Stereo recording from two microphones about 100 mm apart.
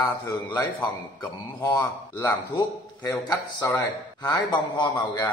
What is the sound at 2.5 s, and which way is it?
A man's voice, 50° left (ahead or behind).